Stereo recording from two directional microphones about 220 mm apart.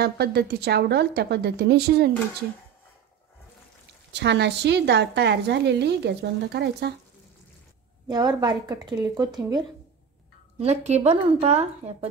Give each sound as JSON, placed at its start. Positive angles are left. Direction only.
{"t": 0.0, "sound": "a woman's voice", "side_deg": -45}
{"t": 4.1, "sound": "a woman's voice", "side_deg": -50}
{"t": 8.1, "sound": "speech", "side_deg": -20}
{"t": 10.6, "sound": "speech", "side_deg": -30}